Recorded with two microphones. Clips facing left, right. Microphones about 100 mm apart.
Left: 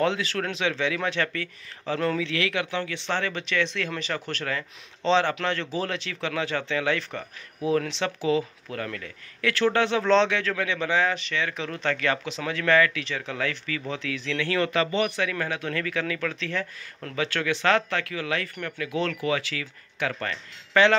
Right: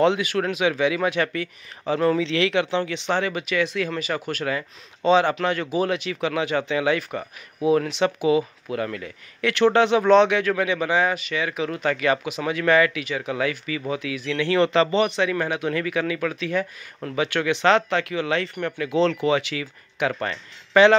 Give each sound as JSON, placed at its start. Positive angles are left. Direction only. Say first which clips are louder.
{"t": 0.0, "sound": "speech", "louder": "right 5 dB", "side_deg": -15}
{"t": 2.1, "sound": "speech", "louder": "right 6 dB", "side_deg": -25}